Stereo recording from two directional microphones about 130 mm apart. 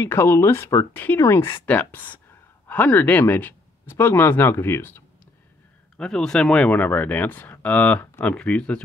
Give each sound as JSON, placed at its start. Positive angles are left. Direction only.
{"t": 0.0, "sound": "speech", "side_deg": 20}
{"t": 5.9, "sound": "speech", "side_deg": 5}